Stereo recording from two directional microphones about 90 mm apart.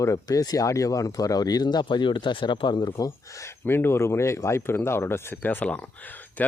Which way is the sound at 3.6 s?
25° left (ahead or behind).